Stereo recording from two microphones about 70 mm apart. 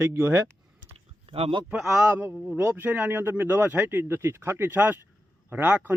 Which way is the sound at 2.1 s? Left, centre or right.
Right.